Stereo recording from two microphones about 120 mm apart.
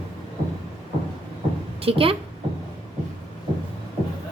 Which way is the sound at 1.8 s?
50° right (ahead or behind).